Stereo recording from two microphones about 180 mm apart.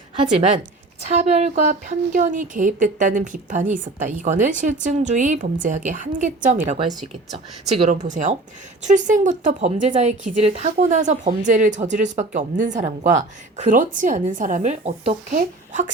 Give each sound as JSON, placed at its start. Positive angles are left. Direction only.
{"t": 0.2, "sound": "a woman's voice", "side_deg": -35}